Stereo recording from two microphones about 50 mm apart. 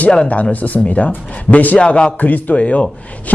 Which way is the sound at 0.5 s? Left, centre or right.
Left.